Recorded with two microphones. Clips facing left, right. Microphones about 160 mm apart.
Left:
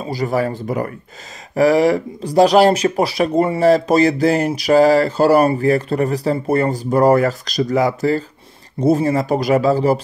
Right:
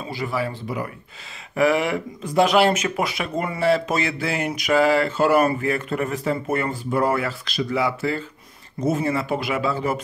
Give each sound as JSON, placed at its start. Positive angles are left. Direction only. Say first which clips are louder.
{"t": 0.0, "sound": "speech", "louder": "left 7 dB", "side_deg": 40}